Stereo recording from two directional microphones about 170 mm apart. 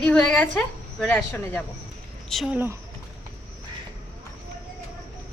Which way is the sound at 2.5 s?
15° right (ahead or behind).